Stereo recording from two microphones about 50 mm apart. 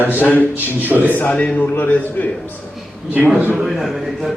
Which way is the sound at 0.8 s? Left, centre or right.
Right.